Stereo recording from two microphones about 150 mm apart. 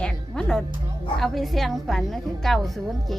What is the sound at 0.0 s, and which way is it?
Music, 5° left (ahead or behind).